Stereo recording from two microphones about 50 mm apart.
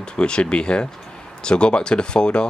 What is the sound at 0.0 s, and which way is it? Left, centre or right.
Speech, centre.